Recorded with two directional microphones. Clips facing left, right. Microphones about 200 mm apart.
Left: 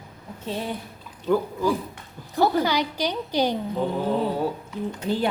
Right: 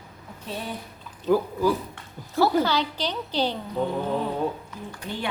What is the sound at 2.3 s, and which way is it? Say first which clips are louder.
A woman's voice: even; 15° left (ahead or behind).